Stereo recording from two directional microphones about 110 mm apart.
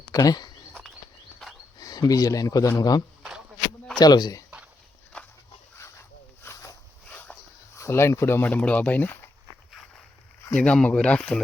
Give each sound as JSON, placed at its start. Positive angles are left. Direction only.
{"t": 0.1, "sound": "speech", "side_deg": 35}
{"t": 0.7, "sound": "a sound", "side_deg": 10}
{"t": 1.8, "sound": "a man's voice", "side_deg": 35}
{"t": 5.1, "sound": "dog", "side_deg": 10}
{"t": 5.7, "sound": "dog", "side_deg": 25}
{"t": 7.1, "sound": "dog", "side_deg": 15}
{"t": 7.8, "sound": "speech", "side_deg": 25}
{"t": 10.5, "sound": "speech", "side_deg": 10}